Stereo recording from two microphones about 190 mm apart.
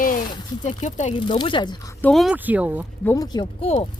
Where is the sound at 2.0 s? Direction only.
5° left (ahead or behind).